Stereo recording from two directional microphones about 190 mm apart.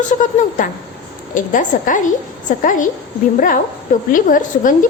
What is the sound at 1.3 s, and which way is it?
A woman's voice, 45° left (ahead or behind).